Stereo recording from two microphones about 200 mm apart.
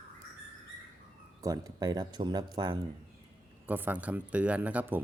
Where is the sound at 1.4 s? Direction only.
15° right (ahead or behind).